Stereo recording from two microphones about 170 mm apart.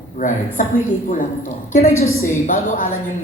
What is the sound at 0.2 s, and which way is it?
Speech, 50° left (ahead or behind).